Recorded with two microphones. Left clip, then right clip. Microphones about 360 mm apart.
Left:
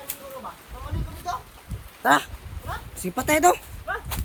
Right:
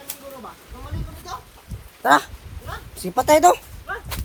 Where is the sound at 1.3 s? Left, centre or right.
Centre.